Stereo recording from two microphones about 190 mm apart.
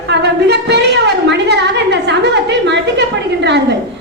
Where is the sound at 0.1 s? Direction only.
60° right (ahead or behind).